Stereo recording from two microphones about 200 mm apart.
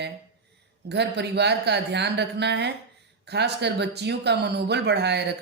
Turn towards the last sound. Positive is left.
turn(degrees=-55)  # may be behind; listen again after turning